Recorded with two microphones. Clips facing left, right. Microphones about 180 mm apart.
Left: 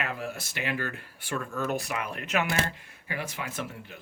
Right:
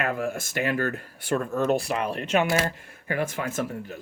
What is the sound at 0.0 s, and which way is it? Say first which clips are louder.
A man's voice: right 7 dB; 45° right (ahead or behind).